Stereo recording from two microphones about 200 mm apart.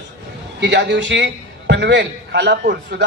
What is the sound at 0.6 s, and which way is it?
A man's voice, 60° right (ahead or behind).